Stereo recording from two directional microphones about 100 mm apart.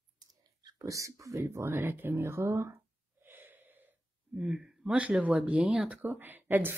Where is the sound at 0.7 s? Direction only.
35° right (ahead or behind).